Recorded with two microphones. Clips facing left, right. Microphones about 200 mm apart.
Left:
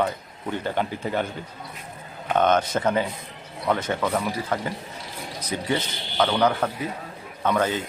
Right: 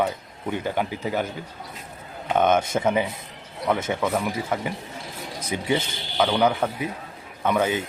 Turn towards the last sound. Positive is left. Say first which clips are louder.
# right 1 dB
turn(degrees=-15)  # may be behind; listen again after turning